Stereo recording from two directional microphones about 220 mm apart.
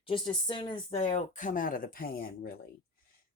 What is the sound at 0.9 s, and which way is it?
Speech, 35° left (ahead or behind).